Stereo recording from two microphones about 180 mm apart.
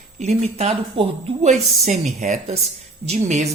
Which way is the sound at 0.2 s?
35° right (ahead or behind).